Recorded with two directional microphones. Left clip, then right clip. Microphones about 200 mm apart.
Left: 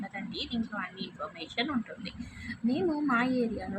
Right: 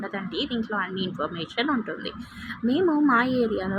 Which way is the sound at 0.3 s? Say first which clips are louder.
Right 8 dB; 15° right (ahead or behind).